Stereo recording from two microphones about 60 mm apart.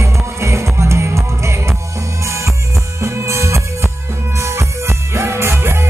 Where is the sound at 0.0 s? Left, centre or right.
Right.